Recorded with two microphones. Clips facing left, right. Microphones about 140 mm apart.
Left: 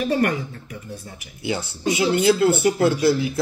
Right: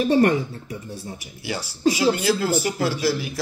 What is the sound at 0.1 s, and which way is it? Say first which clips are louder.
Speech: right 4 dB; 30° right (ahead or behind).